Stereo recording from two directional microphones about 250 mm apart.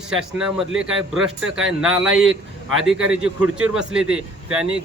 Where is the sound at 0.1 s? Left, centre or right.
Centre.